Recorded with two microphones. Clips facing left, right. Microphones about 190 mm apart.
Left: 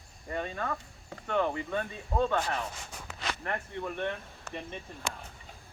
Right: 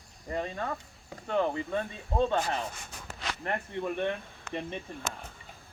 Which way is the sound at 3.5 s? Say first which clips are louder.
Right 5 dB; 15° right (ahead or behind).